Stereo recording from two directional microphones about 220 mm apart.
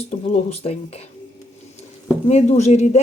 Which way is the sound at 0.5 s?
30° left (ahead or behind).